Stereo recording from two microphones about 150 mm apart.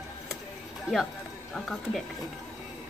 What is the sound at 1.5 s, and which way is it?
Speech, centre (ahead or behind).